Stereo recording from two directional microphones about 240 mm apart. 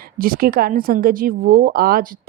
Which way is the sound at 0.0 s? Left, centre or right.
Right.